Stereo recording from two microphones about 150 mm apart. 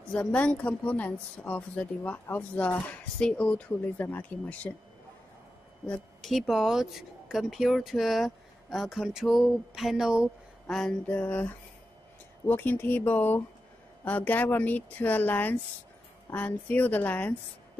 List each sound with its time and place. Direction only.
0.1 s speech: 10° left (ahead or behind)
5.9 s speech: centre (ahead or behind)